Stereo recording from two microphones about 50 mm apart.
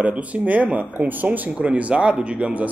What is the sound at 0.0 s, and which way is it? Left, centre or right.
Speech, right.